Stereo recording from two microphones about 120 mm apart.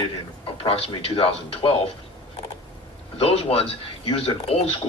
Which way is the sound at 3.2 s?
55° left (ahead or behind).